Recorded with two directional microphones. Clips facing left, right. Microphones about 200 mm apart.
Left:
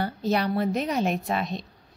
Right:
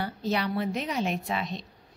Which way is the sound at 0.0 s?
45° left (ahead or behind).